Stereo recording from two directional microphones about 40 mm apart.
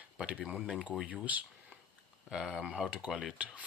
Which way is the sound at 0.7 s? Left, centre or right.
Right.